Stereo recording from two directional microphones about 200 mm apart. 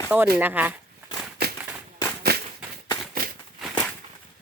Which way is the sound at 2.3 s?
55° right (ahead or behind).